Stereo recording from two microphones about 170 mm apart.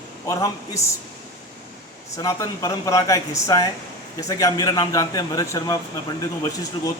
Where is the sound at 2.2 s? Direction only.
20° left (ahead or behind).